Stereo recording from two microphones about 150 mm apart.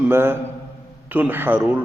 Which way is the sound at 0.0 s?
15° right (ahead or behind).